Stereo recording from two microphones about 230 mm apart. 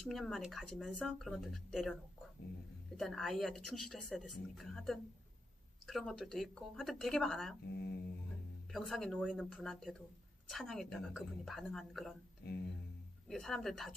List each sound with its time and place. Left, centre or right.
0.1 s speech: centre
3.0 s speech: centre
7.7 s speech: left
8.7 s speech: centre
12.4 s speech: left
13.2 s speech: centre